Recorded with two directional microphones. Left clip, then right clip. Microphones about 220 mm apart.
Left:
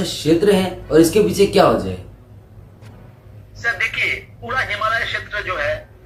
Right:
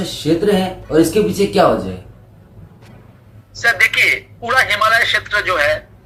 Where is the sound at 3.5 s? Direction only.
35° right (ahead or behind).